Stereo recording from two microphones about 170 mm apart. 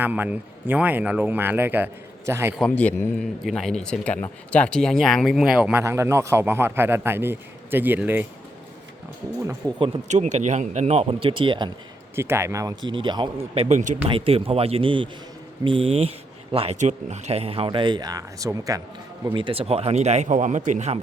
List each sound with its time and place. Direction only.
0.0 s speech: 10° right (ahead or behind)
2.6 s speech: 10° left (ahead or behind); by 8.3 s 10° right (ahead or behind)
9.6 s speech: 10° left (ahead or behind)
10.1 s speech: 45° right (ahead or behind)
12.1 s a man's voice: 15° right (ahead or behind); by 14.1 s 45° right (ahead or behind)
14.1 s speech: 30° right (ahead or behind)